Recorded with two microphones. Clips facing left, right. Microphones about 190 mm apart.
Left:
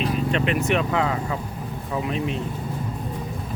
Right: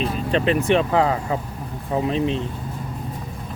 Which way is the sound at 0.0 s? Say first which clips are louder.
Right 2 dB; 35° right (ahead or behind).